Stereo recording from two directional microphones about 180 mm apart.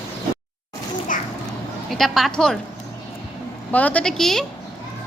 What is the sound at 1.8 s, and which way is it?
Speech, centre (ahead or behind).